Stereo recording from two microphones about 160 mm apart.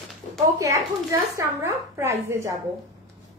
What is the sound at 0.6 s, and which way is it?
A woman's voice, 20° right (ahead or behind).